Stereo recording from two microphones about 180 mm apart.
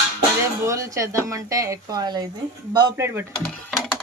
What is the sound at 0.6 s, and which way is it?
Speech, 15° right (ahead or behind).